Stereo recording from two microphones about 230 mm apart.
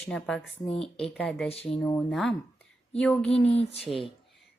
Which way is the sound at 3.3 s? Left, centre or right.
Left.